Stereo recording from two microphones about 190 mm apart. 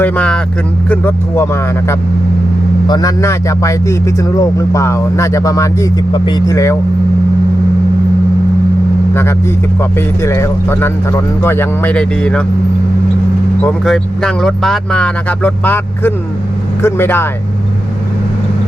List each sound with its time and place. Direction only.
0.0 s a man's voice: 5° left (ahead or behind)
2.8 s a man's voice: 20° left (ahead or behind)
10.2 s a man's voice: 15° left (ahead or behind)
13.7 s a man's voice: 5° left (ahead or behind)